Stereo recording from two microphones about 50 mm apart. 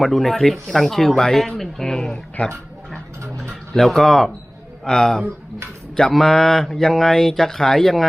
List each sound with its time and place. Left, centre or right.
0.0 s speech: centre
2.4 s speech: left
3.5 s speech: centre
4.9 s speech: centre